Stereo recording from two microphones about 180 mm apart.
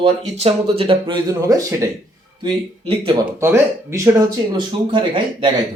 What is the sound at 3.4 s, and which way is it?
Speech, 15° right (ahead or behind).